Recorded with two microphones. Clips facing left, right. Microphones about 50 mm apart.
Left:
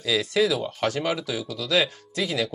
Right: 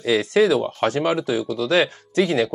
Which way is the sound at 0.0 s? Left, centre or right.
Right.